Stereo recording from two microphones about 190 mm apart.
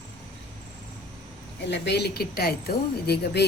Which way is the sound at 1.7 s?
60° left (ahead or behind).